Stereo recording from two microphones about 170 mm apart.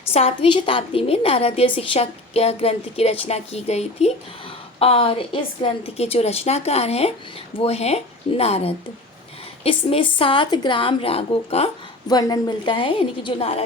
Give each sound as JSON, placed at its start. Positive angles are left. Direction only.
{"t": 0.1, "sound": "a woman's voice", "side_deg": 35}
{"t": 12.0, "sound": "a woman's voice", "side_deg": 25}